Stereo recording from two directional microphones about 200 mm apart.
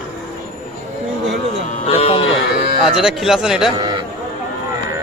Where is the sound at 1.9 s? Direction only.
30° left (ahead or behind).